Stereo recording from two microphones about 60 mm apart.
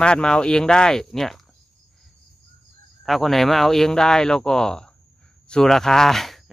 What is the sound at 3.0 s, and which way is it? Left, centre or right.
Speech, centre.